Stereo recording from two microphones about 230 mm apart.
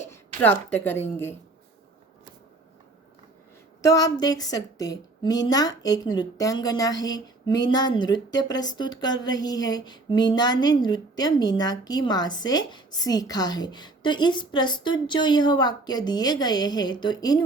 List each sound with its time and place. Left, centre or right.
0.9 s a woman's voice: centre
3.8 s a woman's voice: centre